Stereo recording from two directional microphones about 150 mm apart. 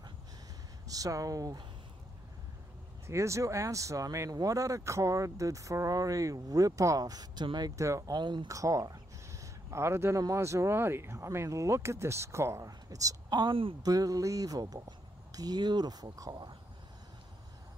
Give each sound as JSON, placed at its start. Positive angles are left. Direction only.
{"t": 0.8, "sound": "speech", "side_deg": -25}
{"t": 3.1, "sound": "speech", "side_deg": -20}
{"t": 13.8, "sound": "speech", "side_deg": -25}